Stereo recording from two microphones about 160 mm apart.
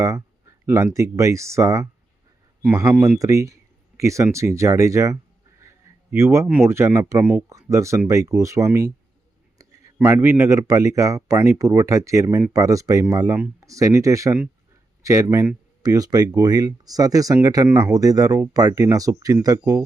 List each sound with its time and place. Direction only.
0.0 s speech: 20° right (ahead or behind)